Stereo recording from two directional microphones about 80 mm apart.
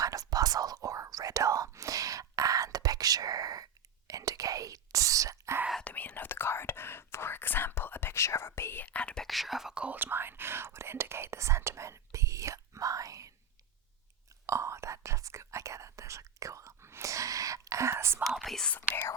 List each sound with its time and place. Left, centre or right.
0.0 s whispering: right
5.8 s whispering: centre
8.9 s whispering: centre
9.2 s whispering: centre; by 13.3 s right
14.4 s whispering: right
18.3 s whispering: centre